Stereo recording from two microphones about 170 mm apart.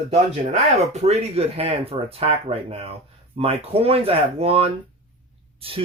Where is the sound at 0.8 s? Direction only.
40° right (ahead or behind).